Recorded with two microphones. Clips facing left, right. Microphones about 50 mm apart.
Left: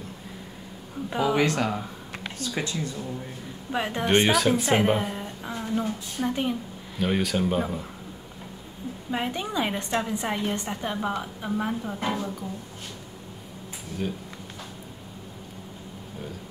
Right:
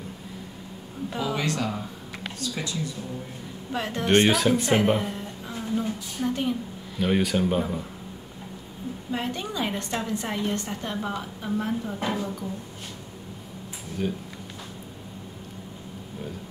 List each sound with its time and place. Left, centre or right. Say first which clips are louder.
1.1 s speech: left 5 dB; left
3.7 s a woman's voice: left 2 dB; centre
4.3 s speech: even; centre
5.1 s a sound: left 1 dB; left
6.2 s a woman's voice: even; centre
7.0 s speech: right 2 dB; centre
9.1 s a woman's voice: left 2 dB; centre
14.0 s speech: right 3 dB; centre